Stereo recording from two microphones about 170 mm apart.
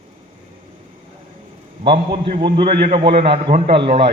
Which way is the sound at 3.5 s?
65° right (ahead or behind).